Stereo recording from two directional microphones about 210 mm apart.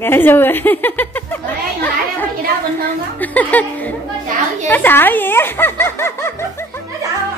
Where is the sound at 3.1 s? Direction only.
5° left (ahead or behind).